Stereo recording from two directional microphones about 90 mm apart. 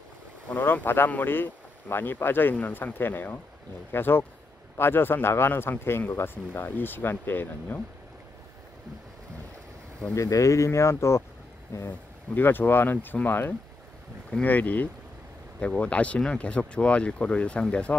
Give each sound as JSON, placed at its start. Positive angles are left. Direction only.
{"t": 0.5, "sound": "speech", "side_deg": 20}
{"t": 10.1, "sound": "speech", "side_deg": 35}